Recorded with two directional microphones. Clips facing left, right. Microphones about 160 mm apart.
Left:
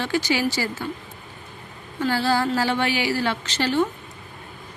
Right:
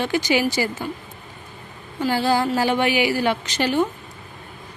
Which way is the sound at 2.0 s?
15° right (ahead or behind).